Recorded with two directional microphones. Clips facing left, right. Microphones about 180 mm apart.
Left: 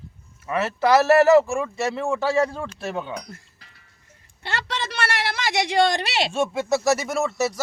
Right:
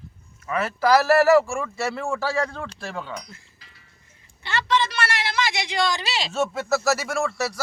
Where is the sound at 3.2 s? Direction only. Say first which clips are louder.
Left 4 dB; 60° left (ahead or behind).